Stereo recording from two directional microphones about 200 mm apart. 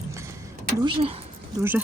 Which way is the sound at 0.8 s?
25° right (ahead or behind).